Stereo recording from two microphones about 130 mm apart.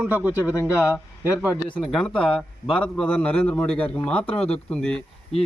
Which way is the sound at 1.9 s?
5° left (ahead or behind).